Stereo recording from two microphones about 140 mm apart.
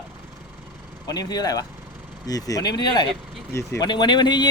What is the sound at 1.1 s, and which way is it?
Speech, 30° left (ahead or behind).